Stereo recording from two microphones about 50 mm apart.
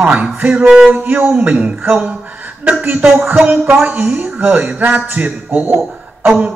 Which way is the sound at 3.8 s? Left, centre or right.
Right.